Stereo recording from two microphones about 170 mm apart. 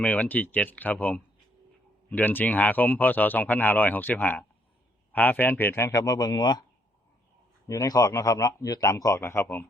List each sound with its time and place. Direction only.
0.0 s speech: 10° left (ahead or behind); by 6.6 s 25° left (ahead or behind)
7.7 s speech: 20° left (ahead or behind)